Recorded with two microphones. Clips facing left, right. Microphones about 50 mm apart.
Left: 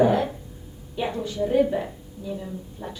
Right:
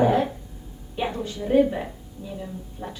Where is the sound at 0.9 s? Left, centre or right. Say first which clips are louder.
Even; centre.